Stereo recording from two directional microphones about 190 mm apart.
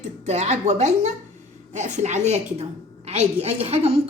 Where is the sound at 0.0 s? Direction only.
35° right (ahead or behind).